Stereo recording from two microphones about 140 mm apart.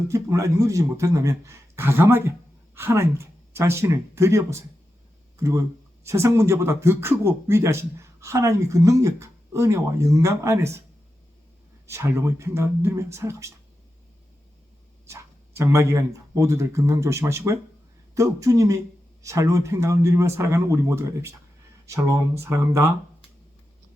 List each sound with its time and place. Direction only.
0.1 s speech: 20° right (ahead or behind)
11.9 s speech: 20° right (ahead or behind)
15.0 s speech: 20° right (ahead or behind)